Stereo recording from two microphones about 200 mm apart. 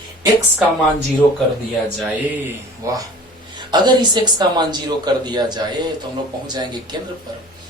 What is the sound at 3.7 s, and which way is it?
Speech, 20° right (ahead or behind).